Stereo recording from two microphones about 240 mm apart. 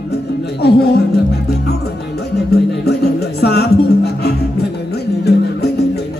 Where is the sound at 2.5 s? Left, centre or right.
Left.